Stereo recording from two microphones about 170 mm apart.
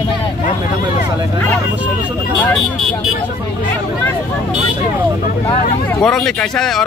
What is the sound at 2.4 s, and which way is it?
Vehicle, centre (ahead or behind).